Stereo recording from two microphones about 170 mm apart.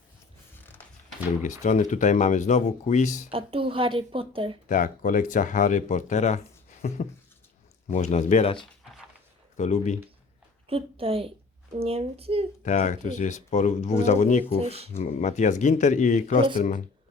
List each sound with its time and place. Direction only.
0.5 s creak: 10° left (ahead or behind)
1.4 s speech: 45° left (ahead or behind)
3.3 s a woman's voice: 30° right (ahead or behind)
4.7 s speech: 50° left (ahead or behind)
10.7 s a woman's voice: 35° right (ahead or behind)
12.6 s speech: 45° left (ahead or behind)
14.6 s a woman's voice: 35° right (ahead or behind)
14.9 s speech: 45° left (ahead or behind)